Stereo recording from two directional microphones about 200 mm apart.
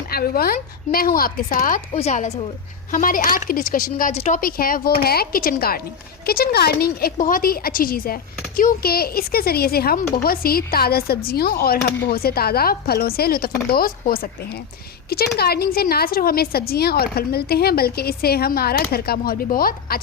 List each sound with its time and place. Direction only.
0.1 s speech: 50° left (ahead or behind)
4.4 s speech: 45° left (ahead or behind)